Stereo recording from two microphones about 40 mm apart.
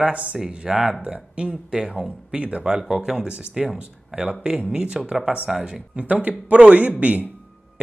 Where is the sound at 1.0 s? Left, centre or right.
Right.